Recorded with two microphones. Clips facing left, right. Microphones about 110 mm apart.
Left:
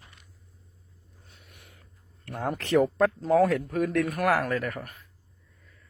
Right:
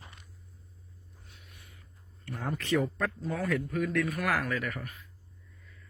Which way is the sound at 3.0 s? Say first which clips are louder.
Left 11 dB; 90° left.